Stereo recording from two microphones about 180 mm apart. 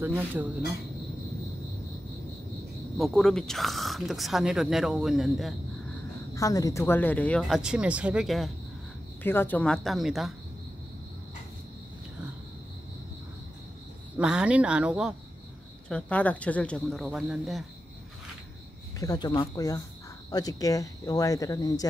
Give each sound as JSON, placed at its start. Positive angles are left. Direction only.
{"t": 0.0, "sound": "speech", "side_deg": -10}
{"t": 3.0, "sound": "speech", "side_deg": 5}
{"t": 6.3, "sound": "speech", "side_deg": 20}
{"t": 9.2, "sound": "speech", "side_deg": 10}
{"t": 14.1, "sound": "speech", "side_deg": -5}
{"t": 15.9, "sound": "speech", "side_deg": 10}
{"t": 18.9, "sound": "speech", "side_deg": 20}